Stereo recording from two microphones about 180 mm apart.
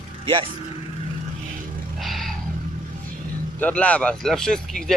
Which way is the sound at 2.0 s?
Centre (ahead or behind).